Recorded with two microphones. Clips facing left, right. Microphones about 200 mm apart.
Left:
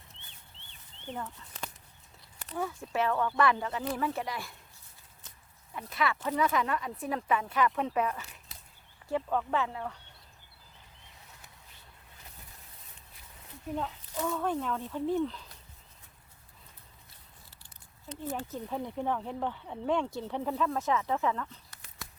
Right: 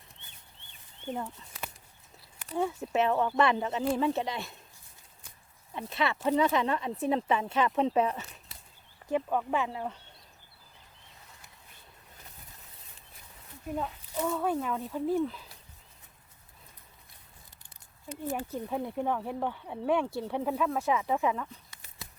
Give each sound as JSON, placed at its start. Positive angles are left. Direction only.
{"t": 1.0, "sound": "speech", "side_deg": -15}
{"t": 2.6, "sound": "speech", "side_deg": -25}
{"t": 5.7, "sound": "speech", "side_deg": -25}
{"t": 9.0, "sound": "speech", "side_deg": -15}
{"t": 13.7, "sound": "speech", "side_deg": -5}
{"t": 18.1, "sound": "speech", "side_deg": -10}